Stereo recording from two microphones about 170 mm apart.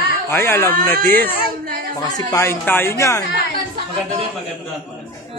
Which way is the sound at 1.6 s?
55° right (ahead or behind).